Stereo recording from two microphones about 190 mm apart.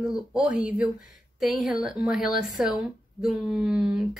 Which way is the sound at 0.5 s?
5° right (ahead or behind).